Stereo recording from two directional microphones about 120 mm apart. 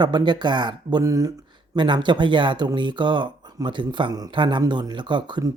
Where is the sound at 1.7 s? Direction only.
40° right (ahead or behind).